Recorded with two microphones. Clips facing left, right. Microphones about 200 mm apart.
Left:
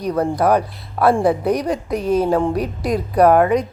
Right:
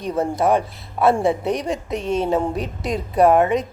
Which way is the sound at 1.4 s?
Centre (ahead or behind).